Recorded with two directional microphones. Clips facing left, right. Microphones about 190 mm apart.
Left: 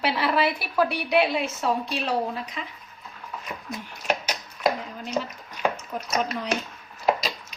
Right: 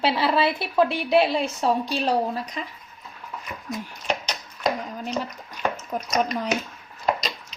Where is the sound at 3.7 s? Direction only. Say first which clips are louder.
Even; 5° left (ahead or behind).